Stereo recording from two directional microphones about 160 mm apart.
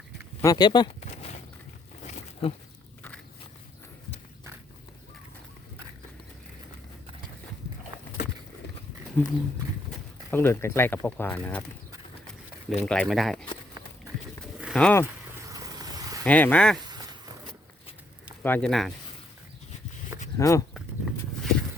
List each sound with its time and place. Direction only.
0.4 s speech: 25° left (ahead or behind)
1.1 s a sound: 40° left (ahead or behind)
9.2 s speech: 10° left (ahead or behind)
10.3 s speech: 15° left (ahead or behind)
12.8 s speech: 5° left (ahead or behind)
14.8 s speech: 5° left (ahead or behind)
15.4 s a sound: 20° right (ahead or behind)
16.2 s speech: 10° left (ahead or behind)
18.4 s speech: 10° left (ahead or behind)
20.4 s speech: 20° left (ahead or behind)
20.7 s horse: centre (ahead or behind)